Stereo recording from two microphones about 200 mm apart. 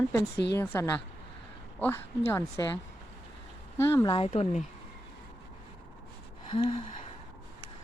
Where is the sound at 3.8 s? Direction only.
15° left (ahead or behind); by 4.6 s 30° left (ahead or behind).